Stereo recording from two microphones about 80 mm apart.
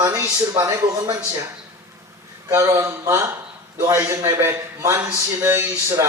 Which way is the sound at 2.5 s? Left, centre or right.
Right.